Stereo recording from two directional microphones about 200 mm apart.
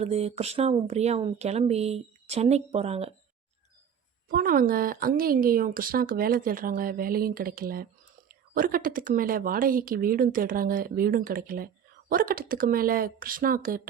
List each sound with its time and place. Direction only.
0.0 s speech: 30° right (ahead or behind)
4.3 s speech: 45° right (ahead or behind)